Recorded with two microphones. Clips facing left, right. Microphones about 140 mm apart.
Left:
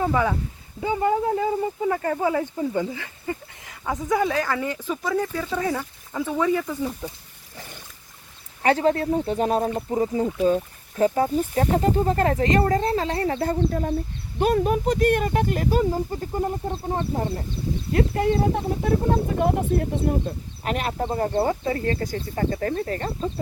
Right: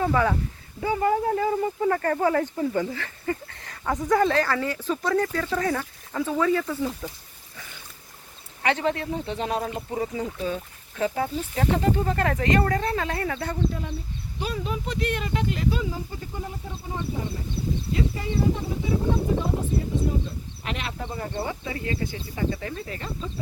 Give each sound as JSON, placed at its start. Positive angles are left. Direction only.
{"t": 0.0, "sound": "speech", "side_deg": 15}
{"t": 3.7, "sound": "speech", "side_deg": 5}
{"t": 7.5, "sound": "a sound", "side_deg": 45}
{"t": 8.6, "sound": "speech", "side_deg": 40}
{"t": 14.3, "sound": "speech", "side_deg": 50}
{"t": 17.9, "sound": "speech", "side_deg": 60}
{"t": 21.4, "sound": "speech", "side_deg": 40}